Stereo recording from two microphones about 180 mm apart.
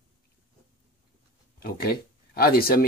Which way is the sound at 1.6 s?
60° left (ahead or behind).